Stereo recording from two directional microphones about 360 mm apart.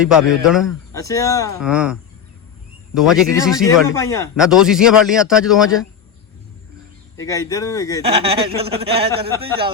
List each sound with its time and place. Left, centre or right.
0.0 s a man's voice: centre
0.9 s speech: centre
1.6 s a man's voice: centre
4.4 s a man's voice: centre
7.2 s speech: centre
8.0 s speech: centre